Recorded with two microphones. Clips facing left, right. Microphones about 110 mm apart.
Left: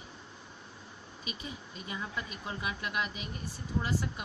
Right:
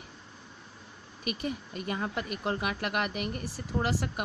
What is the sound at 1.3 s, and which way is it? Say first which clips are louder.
Speech: right 10 dB; 60° right (ahead or behind).